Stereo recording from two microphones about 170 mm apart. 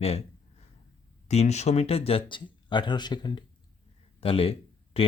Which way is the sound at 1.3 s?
40° left (ahead or behind).